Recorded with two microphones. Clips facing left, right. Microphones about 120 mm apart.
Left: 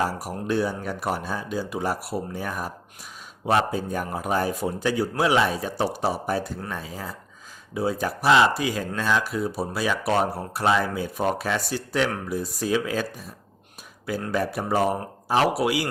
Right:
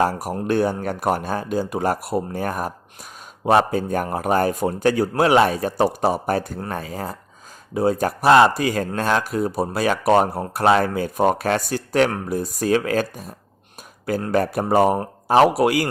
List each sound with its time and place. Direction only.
0.0 s speech: 50° right (ahead or behind)
14.3 s speech: 50° right (ahead or behind)